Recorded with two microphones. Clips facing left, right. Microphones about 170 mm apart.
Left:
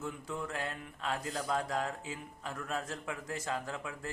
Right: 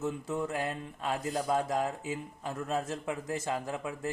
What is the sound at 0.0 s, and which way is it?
Speech, 25° right (ahead or behind).